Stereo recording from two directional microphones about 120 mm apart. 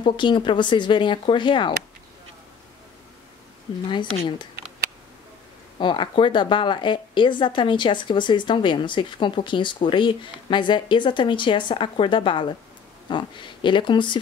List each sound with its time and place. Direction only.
0.0 s speech: 40° left (ahead or behind)
3.7 s speech: 50° left (ahead or behind)
5.8 s speech: 40° left (ahead or behind)